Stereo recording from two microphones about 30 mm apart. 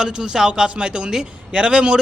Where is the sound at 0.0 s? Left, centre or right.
Right.